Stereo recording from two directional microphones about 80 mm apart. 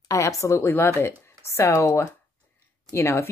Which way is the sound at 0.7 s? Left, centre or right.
Left.